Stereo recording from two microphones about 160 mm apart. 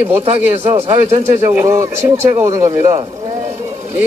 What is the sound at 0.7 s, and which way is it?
Speech, 40° right (ahead or behind).